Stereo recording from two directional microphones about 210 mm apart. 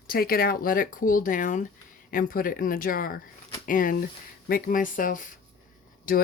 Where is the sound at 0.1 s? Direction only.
45° left (ahead or behind).